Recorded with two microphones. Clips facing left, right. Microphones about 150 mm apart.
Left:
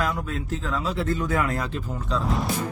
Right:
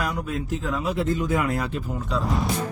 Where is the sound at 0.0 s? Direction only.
15° right (ahead or behind).